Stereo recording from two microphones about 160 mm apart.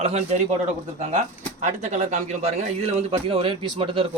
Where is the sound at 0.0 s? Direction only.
40° right (ahead or behind).